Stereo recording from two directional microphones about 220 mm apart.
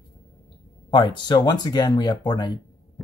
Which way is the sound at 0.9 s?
20° left (ahead or behind).